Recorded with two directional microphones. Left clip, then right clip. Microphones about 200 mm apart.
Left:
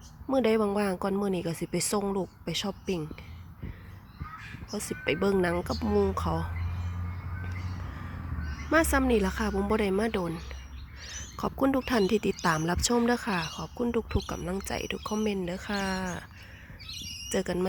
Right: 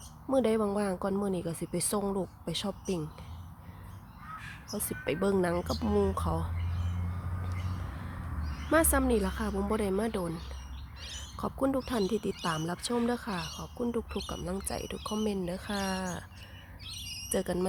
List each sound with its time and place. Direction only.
0.3 s speech: 10° left (ahead or behind)
4.7 s speech: 10° left (ahead or behind)
8.7 s speech: 5° left (ahead or behind)
11.0 s a sound: 10° left (ahead or behind)
11.9 s speech: 20° left (ahead or behind)
17.3 s speech: 10° left (ahead or behind)